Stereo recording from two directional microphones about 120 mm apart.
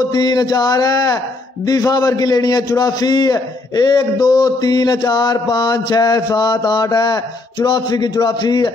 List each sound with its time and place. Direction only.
0.0 s a man's voice: 35° left (ahead or behind)